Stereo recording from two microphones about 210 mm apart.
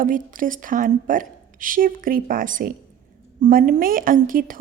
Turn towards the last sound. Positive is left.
turn(degrees=-40)  # may be behind; listen again after turning